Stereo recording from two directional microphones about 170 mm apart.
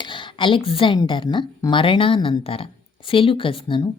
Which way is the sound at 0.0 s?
30° left (ahead or behind).